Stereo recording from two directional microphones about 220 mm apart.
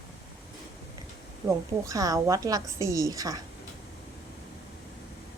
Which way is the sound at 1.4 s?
20° right (ahead or behind).